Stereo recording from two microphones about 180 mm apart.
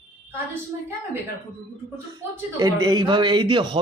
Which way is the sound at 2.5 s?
20° right (ahead or behind).